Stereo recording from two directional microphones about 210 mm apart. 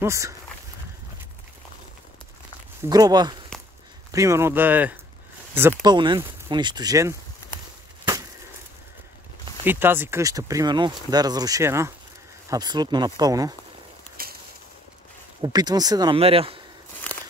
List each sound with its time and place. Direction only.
0.0 s speech: 15° right (ahead or behind)
2.8 s speech: 20° right (ahead or behind)
9.7 s speech: 10° right (ahead or behind)
14.2 s a sound: 45° right (ahead or behind)
15.4 s speech: 20° right (ahead or behind)